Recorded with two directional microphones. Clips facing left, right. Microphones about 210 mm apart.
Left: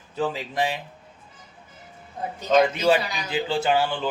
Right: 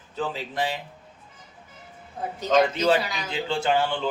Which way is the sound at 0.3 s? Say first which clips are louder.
Left 2 dB; 15° left (ahead or behind).